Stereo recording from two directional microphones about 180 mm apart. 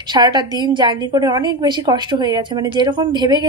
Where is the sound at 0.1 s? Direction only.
25° right (ahead or behind).